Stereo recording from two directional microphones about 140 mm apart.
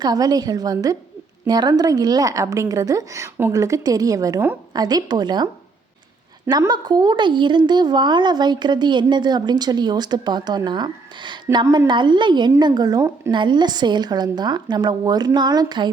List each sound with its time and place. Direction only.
0.0 s a woman's voice: 30° right (ahead or behind)
6.5 s a woman's voice: 30° right (ahead or behind)
13.3 s a woman's voice: 35° right (ahead or behind)